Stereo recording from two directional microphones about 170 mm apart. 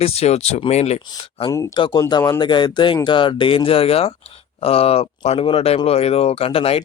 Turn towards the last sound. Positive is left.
turn(degrees=35)  # may be behind; listen again after turning